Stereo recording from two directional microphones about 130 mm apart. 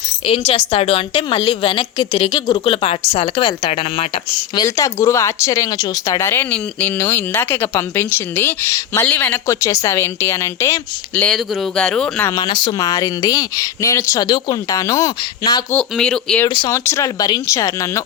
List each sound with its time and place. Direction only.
0.3 s a woman's voice: 45° left (ahead or behind)
4.6 s speech: 25° left (ahead or behind)
11.2 s speech: 5° left (ahead or behind)
12.3 s speech: 35° left (ahead or behind)
14.3 s speech: 35° left (ahead or behind)
15.7 s speech: 5° left (ahead or behind)
16.5 s speech: 40° left (ahead or behind)
16.7 s speech: 20° left (ahead or behind)